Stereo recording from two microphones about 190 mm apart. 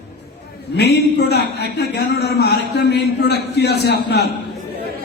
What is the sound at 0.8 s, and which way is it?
A man's voice, 60° left (ahead or behind).